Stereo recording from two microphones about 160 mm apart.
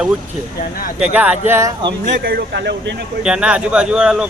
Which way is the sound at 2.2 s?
80° right.